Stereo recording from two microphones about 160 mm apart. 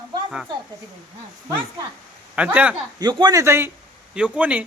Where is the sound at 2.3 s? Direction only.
5° right (ahead or behind).